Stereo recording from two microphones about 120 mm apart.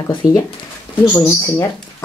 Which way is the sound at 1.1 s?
20° left (ahead or behind).